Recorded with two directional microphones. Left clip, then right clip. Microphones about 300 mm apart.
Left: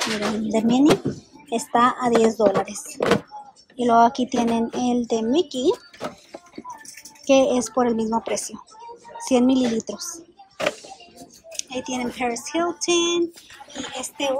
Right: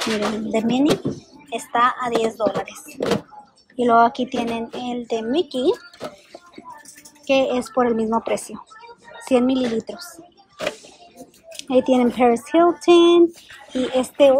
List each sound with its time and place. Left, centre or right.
0.5 s speech: centre
3.7 s a sound: centre
7.2 s speech: centre
11.1 s speech: centre